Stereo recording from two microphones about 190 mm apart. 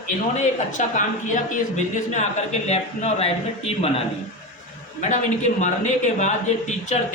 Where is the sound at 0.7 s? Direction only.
40° left (ahead or behind).